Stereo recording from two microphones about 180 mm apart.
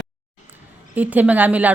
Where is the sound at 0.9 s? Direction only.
10° right (ahead or behind).